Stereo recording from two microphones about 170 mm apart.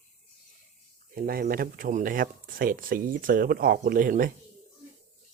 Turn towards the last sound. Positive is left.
turn(degrees=-55)  # may be behind; listen again after turning